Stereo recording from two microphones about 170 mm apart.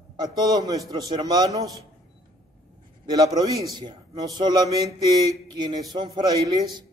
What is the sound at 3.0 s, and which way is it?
A man's voice, 20° right (ahead or behind).